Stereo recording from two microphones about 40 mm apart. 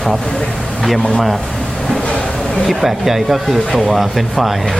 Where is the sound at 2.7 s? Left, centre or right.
Centre.